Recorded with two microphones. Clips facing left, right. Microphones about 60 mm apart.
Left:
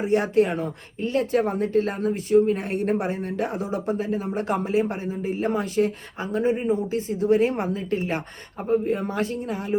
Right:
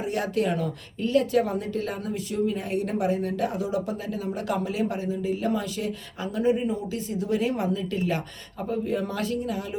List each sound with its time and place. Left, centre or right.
0.0 s speech: left